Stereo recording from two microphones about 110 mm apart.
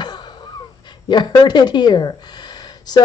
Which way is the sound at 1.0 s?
40° left (ahead or behind).